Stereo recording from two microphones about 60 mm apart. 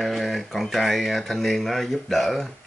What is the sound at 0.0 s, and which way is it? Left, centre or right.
Speech, centre.